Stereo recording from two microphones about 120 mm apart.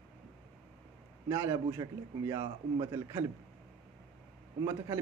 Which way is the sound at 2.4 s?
45° right (ahead or behind).